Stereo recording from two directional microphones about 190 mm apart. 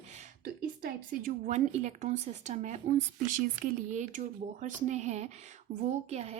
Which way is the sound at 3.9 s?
40° right (ahead or behind).